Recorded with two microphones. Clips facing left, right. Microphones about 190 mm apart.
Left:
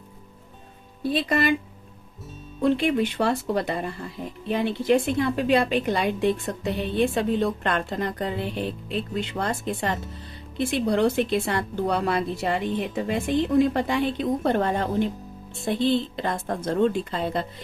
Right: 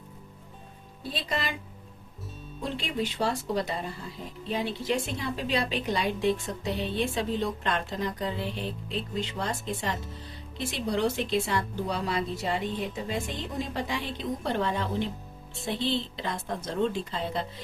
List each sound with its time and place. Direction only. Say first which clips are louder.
1.1 s a woman's voice: left 10 dB; 60° left (ahead or behind)
2.6 s a woman's voice: left 10 dB; 60° left (ahead or behind)